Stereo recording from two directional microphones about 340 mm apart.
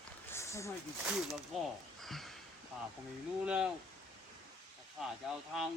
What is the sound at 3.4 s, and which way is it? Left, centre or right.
Speech, centre.